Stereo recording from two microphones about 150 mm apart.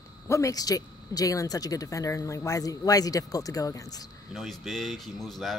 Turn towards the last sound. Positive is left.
turn(degrees=0)  # may be behind; listen again after turning